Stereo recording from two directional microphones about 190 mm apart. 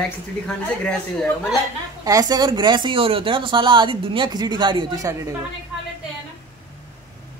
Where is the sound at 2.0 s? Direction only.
20° right (ahead or behind).